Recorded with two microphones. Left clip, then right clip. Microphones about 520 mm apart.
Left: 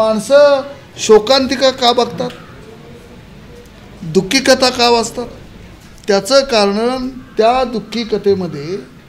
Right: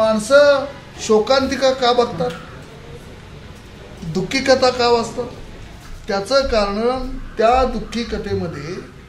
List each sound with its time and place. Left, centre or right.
0.0 s a woman's voice: left
4.1 s a woman's voice: left